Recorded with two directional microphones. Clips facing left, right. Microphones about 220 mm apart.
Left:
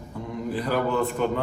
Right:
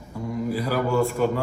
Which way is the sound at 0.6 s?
5° right (ahead or behind).